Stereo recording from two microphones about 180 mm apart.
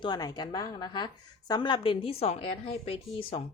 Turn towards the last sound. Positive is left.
turn(degrees=35)  # may be behind; listen again after turning